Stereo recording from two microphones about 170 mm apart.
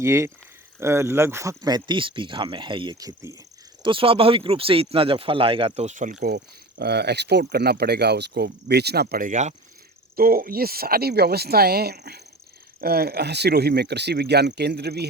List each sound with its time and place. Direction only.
0.0 s speech: 15° right (ahead or behind)
3.8 s speech: 30° right (ahead or behind)
10.2 s speech: 60° right (ahead or behind)